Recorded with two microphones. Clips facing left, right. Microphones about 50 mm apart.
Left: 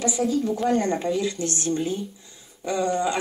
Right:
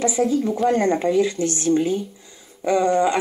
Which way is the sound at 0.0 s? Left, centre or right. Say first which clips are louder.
Right 4 dB; right.